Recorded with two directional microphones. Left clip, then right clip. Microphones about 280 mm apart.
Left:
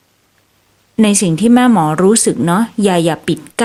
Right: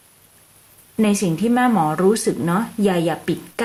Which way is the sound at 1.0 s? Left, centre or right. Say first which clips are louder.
Left 6 dB; left.